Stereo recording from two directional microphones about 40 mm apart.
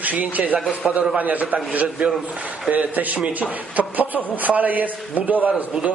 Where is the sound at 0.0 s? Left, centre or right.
Right.